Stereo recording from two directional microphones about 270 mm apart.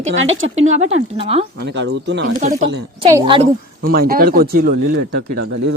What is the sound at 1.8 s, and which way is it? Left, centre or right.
Speech, right.